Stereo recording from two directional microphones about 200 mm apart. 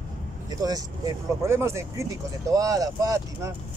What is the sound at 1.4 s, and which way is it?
Speech, 15° right (ahead or behind).